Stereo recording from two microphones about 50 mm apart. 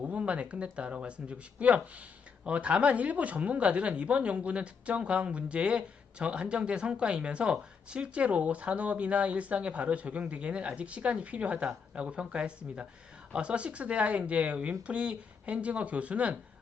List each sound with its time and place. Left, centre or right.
0.0 s speech: right